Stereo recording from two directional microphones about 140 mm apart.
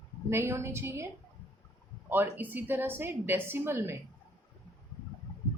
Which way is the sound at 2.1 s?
15° right (ahead or behind).